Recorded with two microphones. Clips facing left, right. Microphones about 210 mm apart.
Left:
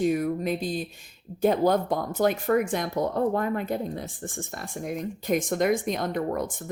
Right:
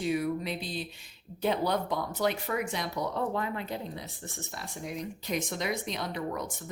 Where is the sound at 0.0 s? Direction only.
45° left (ahead or behind).